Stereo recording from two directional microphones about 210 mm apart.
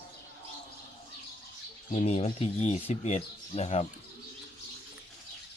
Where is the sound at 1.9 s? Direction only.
30° left (ahead or behind).